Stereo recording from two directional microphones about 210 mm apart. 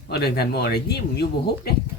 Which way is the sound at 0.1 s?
50° left (ahead or behind).